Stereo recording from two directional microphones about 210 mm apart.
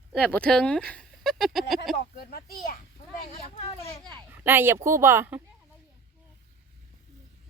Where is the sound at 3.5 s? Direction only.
30° left (ahead or behind).